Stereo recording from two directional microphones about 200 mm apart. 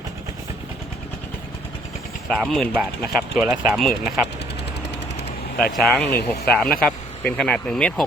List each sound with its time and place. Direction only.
2.3 s speech: centre (ahead or behind)
5.7 s speech: 5° left (ahead or behind)
6.1 s speech: 55° left (ahead or behind)
6.5 s speech: centre (ahead or behind)